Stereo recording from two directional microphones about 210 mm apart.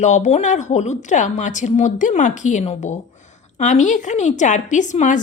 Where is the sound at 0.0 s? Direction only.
35° left (ahead or behind).